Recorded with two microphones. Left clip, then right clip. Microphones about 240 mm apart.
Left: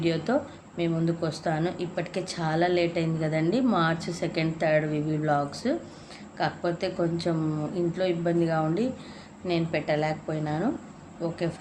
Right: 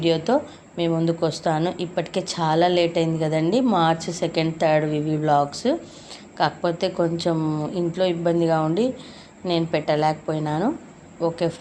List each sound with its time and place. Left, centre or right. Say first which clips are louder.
0.0 s speech: right 6 dB; centre